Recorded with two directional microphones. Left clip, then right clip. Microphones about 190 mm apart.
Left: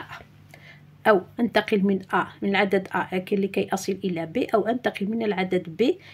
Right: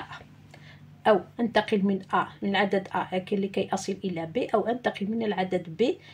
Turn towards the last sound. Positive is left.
turn(degrees=40)  # may be behind; listen again after turning